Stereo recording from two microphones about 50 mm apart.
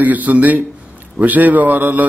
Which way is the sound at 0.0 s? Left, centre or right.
Right.